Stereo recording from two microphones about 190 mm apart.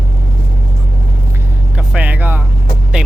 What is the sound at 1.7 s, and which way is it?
Vehicle, 5° right (ahead or behind).